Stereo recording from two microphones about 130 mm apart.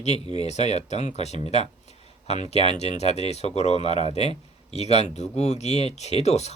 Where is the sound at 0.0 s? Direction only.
55° left (ahead or behind).